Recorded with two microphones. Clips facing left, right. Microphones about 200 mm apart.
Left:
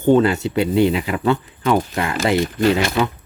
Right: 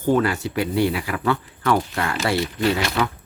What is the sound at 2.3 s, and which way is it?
Speech, 45° left (ahead or behind).